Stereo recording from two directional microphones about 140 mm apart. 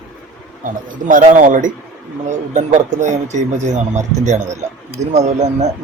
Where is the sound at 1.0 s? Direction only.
65° right (ahead or behind).